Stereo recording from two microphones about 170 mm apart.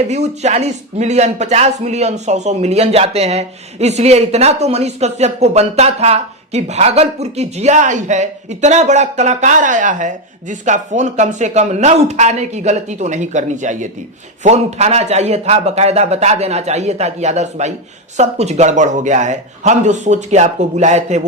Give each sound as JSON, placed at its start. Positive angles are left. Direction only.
{"t": 0.1, "sound": "speech", "side_deg": -40}